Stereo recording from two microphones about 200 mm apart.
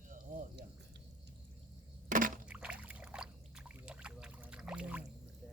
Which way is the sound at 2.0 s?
40° right (ahead or behind).